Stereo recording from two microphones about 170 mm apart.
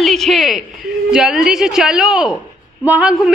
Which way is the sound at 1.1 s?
5° right (ahead or behind).